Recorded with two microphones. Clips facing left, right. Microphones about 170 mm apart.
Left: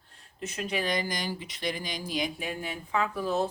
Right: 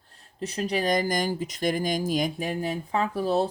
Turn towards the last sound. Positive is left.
turn(degrees=-35)  # may be behind; listen again after turning